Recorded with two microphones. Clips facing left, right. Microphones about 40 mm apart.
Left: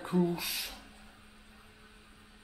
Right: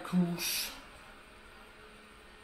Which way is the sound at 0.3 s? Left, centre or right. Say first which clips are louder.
Left 1 dB; centre.